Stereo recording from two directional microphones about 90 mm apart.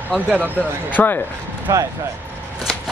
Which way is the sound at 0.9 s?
20° left (ahead or behind).